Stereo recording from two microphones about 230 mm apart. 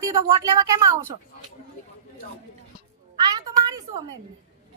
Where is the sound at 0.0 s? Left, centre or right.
Centre.